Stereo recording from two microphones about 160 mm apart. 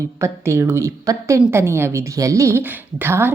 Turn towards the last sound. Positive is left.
turn(degrees=-15)  # may be behind; listen again after turning